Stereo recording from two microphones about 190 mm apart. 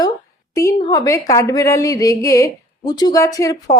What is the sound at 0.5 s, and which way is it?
A woman's voice, 20° left (ahead or behind).